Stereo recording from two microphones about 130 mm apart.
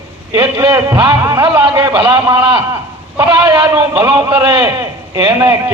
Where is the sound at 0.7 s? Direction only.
35° right (ahead or behind).